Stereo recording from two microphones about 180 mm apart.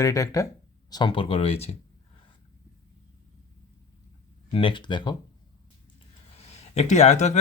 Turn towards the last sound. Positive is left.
turn(degrees=40)  # may be behind; listen again after turning